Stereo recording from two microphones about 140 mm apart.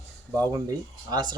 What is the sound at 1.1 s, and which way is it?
Speech, 30° right (ahead or behind).